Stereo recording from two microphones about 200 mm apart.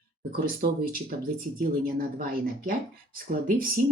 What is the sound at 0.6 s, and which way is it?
Speech, 50° right (ahead or behind).